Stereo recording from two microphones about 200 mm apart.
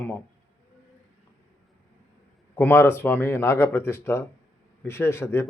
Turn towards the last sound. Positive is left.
turn(degrees=10)  # may be behind; listen again after turning